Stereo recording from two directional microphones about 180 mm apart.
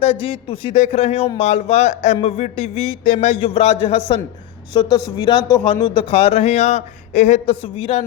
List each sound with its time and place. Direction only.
0.0 s a man's voice: 35° left (ahead or behind)
4.7 s a man's voice: 20° left (ahead or behind)